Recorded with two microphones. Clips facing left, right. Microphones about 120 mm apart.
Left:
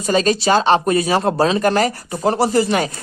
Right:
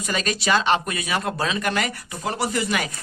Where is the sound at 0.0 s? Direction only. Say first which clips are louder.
Left 9 dB; 30° left (ahead or behind).